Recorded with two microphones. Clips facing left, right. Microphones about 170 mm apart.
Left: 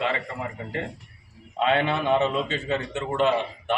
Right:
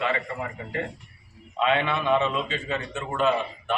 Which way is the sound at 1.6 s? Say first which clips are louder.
Left 1 dB; 35° left (ahead or behind).